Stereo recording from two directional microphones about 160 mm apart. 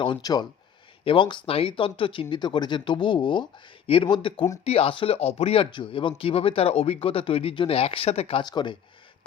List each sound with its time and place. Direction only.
0.0 s speech: 25° left (ahead or behind)